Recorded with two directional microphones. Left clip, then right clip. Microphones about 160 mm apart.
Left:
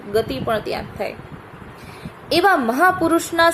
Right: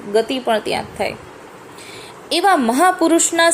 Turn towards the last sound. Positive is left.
turn(degrees=-15)  # may be behind; listen again after turning